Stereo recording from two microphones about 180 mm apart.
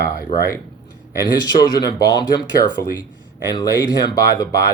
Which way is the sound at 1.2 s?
20° left (ahead or behind).